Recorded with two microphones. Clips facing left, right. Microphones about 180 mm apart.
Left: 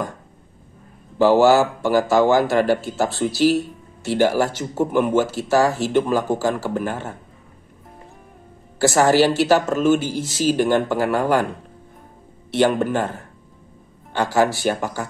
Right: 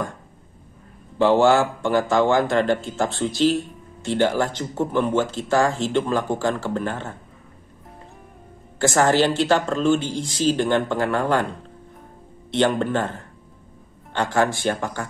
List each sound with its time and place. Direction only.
1.1 s a man's voice: 5° left (ahead or behind)
8.7 s a man's voice: 10° left (ahead or behind)
12.4 s a man's voice: 5° left (ahead or behind)